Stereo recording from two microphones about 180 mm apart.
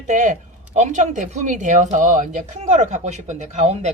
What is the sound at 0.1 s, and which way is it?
Speech, 45° right (ahead or behind).